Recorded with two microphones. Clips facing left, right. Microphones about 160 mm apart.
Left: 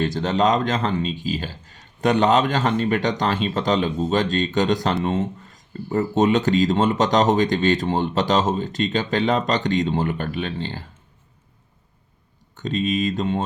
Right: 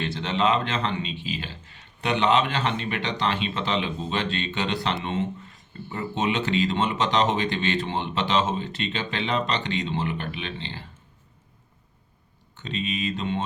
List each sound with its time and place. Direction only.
0.0 s speech: 40° left (ahead or behind)
12.5 s speech: 45° left (ahead or behind)